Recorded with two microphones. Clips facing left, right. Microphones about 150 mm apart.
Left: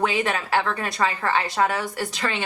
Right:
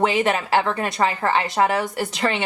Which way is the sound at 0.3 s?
25° right (ahead or behind).